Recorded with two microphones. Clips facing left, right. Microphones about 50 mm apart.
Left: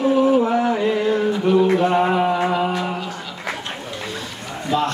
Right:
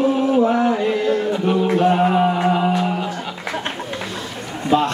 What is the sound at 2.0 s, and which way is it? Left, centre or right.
Speech, centre.